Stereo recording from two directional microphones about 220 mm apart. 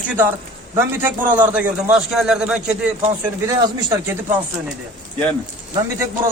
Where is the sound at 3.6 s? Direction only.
15° right (ahead or behind).